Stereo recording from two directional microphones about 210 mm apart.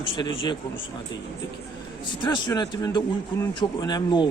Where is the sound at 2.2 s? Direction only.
20° left (ahead or behind).